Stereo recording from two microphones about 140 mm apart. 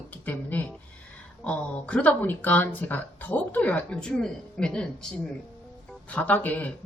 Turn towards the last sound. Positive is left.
turn(degrees=10)  # may be behind; listen again after turning